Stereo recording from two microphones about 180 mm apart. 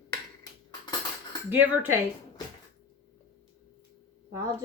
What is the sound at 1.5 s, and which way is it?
Speech, 10° right (ahead or behind).